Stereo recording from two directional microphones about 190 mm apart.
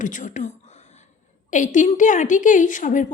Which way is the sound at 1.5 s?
40° left (ahead or behind).